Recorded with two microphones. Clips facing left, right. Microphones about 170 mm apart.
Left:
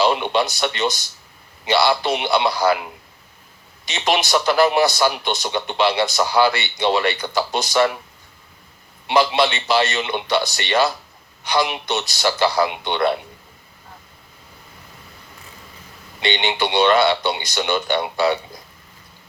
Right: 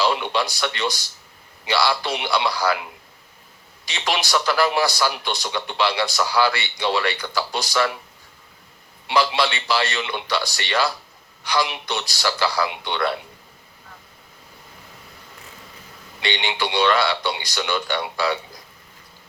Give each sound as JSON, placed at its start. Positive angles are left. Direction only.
{"t": 0.0, "sound": "a man's voice", "side_deg": 20}
{"t": 3.8, "sound": "a man's voice", "side_deg": 20}
{"t": 9.0, "sound": "a man's voice", "side_deg": 20}
{"t": 16.2, "sound": "a man's voice", "side_deg": 20}